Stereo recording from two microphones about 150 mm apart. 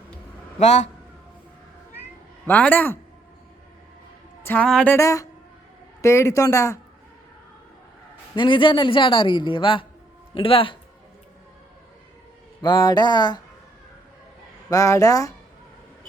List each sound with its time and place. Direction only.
0.6 s a man's voice: 50° left (ahead or behind)
2.5 s a woman's voice: 10° left (ahead or behind)
4.4 s a woman's voice: 10° left (ahead or behind)
4.9 s speech: 20° left (ahead or behind)
8.4 s a man's voice: 35° left (ahead or behind)
12.6 s speech: 30° left (ahead or behind)
14.7 s speech: 20° left (ahead or behind)